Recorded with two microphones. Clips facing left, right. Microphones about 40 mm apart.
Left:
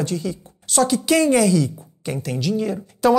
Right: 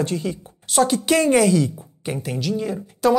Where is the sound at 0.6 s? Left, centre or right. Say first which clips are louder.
Even; centre.